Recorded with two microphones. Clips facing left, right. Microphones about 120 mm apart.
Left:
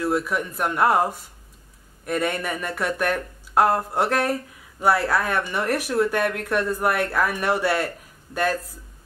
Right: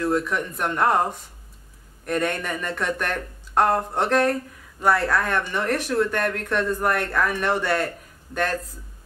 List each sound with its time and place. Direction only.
0.0 s speech: 5° left (ahead or behind)